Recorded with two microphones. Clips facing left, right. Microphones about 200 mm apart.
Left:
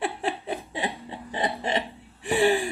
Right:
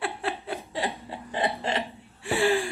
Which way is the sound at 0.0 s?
15° left (ahead or behind).